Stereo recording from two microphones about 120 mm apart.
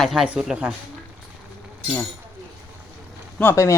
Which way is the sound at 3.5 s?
25° left (ahead or behind).